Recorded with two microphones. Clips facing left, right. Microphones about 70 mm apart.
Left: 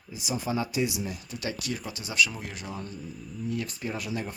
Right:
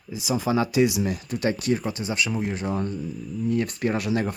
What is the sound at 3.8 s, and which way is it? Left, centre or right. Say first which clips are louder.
Speech: right 9 dB; right.